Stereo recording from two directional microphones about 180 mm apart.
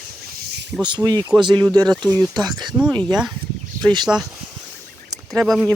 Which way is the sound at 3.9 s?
25° right (ahead or behind).